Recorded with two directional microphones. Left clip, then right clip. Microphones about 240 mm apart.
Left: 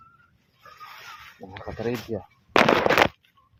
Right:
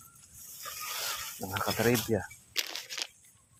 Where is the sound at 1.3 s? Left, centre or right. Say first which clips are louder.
Right 4 dB; right.